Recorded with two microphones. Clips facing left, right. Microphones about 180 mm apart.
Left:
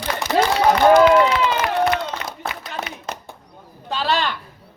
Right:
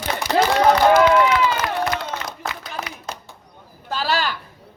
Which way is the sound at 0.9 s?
25° left (ahead or behind).